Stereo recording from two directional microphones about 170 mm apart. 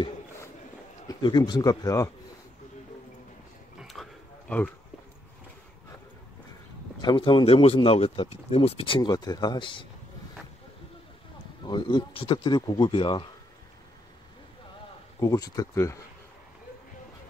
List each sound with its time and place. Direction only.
1.0 s speech: 25° left (ahead or behind)
3.8 s a sound: centre (ahead or behind)
7.0 s speech: 30° left (ahead or behind)
11.6 s speech: 25° left (ahead or behind)
15.1 s speech: 20° left (ahead or behind)